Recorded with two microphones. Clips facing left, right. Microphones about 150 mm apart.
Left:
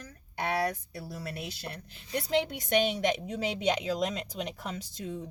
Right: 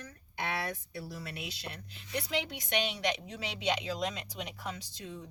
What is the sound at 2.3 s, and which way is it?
A woman's voice, 50° left (ahead or behind).